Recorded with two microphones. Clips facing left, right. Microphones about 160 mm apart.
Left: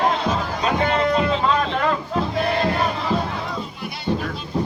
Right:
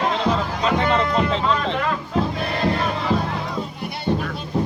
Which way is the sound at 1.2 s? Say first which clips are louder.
Left 1 dB; 90° right.